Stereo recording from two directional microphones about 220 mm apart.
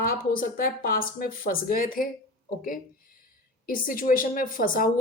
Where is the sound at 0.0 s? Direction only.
40° left (ahead or behind).